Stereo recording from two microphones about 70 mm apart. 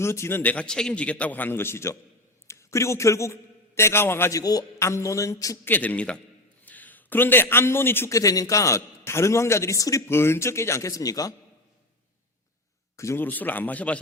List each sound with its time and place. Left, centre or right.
0.0 s a man's voice: left
0.4 s a man's voice: centre; by 4.3 s left
4.3 s a man's voice: left
4.8 s a man's voice: left
5.6 s a man's voice: left
8.1 s a man's voice: left
13.1 s a man's voice: left